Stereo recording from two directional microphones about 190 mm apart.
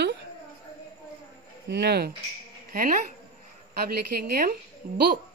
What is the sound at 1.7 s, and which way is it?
Speech, 60° right (ahead or behind).